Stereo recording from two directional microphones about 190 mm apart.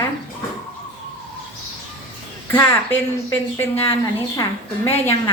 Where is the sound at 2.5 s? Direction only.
15° left (ahead or behind).